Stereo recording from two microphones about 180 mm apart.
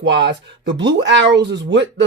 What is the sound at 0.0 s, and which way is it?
Speech, 90° right.